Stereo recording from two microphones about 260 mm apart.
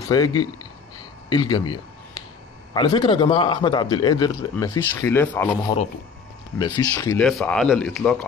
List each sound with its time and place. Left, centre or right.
0.1 s a man's voice: centre
2.7 s a man's voice: centre
6.6 s speech: centre